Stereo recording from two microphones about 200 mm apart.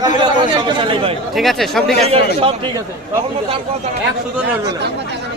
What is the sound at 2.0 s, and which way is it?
Speech, 25° right (ahead or behind).